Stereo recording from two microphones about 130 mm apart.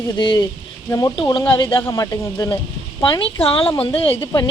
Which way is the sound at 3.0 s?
40° left (ahead or behind).